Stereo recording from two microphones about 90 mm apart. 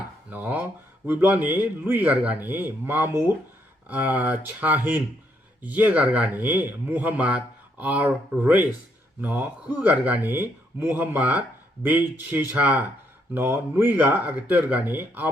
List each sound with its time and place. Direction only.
0.3 s speech: 20° right (ahead or behind)